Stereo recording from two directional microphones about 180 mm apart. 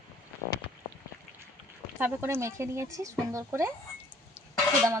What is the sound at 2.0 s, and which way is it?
Speech, 10° right (ahead or behind).